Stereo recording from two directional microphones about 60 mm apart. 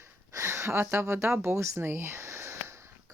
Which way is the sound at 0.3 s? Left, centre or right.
Right.